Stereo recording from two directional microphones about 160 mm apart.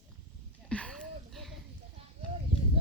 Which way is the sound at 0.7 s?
5° left (ahead or behind).